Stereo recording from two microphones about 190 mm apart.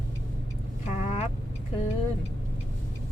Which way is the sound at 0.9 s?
35° left (ahead or behind).